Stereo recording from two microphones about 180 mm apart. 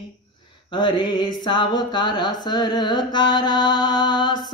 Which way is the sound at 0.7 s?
25° left (ahead or behind).